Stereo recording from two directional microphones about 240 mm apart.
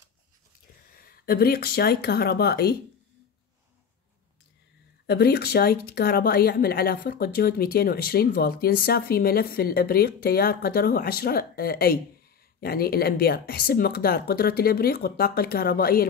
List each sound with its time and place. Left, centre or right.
1.0 s a woman's voice: left
5.0 s a woman's voice: left